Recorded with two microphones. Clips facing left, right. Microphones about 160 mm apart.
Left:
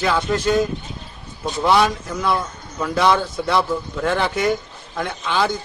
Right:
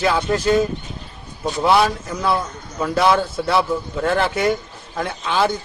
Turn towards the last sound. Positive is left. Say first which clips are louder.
# right 1 dB
turn(degrees=-5)  # may be behind; listen again after turning